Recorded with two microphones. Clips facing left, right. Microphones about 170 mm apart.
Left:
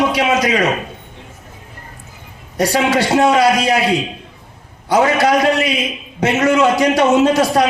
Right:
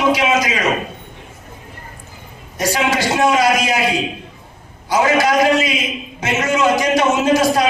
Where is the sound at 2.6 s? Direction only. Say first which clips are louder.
Left 3 dB; 65° left (ahead or behind).